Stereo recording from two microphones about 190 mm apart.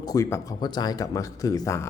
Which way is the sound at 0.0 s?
15° left (ahead or behind).